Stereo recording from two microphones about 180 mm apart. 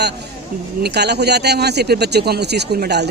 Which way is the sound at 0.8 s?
65° right (ahead or behind).